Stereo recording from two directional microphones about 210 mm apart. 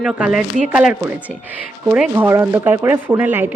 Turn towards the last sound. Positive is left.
turn(degrees=-10)  # may be behind; listen again after turning